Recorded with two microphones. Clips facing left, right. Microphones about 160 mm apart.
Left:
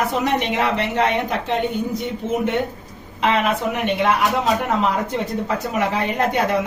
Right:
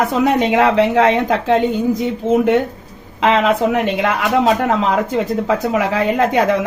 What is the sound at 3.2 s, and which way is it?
Speech, 90° right.